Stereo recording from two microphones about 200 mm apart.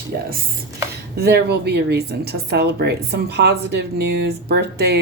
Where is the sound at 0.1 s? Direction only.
50° right (ahead or behind).